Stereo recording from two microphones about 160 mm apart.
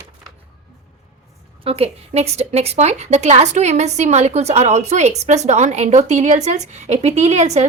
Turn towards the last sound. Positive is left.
turn(degrees=-45)  # may be behind; listen again after turning